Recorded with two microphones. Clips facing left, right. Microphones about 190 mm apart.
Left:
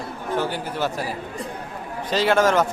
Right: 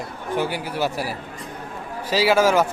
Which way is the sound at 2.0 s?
10° right (ahead or behind).